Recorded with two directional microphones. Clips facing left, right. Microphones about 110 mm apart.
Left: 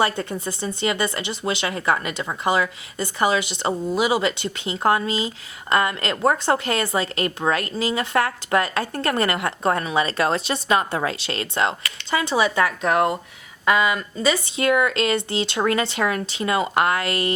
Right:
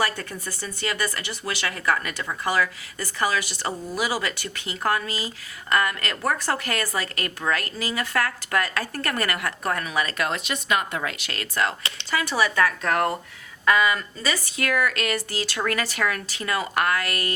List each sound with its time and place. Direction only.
0.0 s speech: 25° left (ahead or behind)